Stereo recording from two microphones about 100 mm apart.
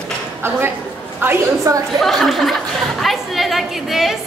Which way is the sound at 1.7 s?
35° right (ahead or behind).